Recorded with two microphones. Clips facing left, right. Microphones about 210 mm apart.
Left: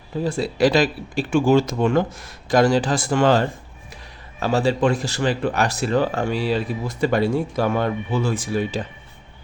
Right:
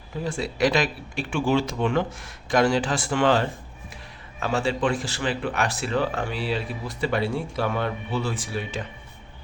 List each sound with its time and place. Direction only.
0.3 s speech: 35° left (ahead or behind)